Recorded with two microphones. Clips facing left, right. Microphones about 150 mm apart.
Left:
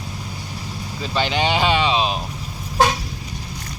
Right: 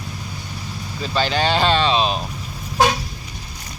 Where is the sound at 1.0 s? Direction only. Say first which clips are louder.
Right 1 dB; 20° left (ahead or behind).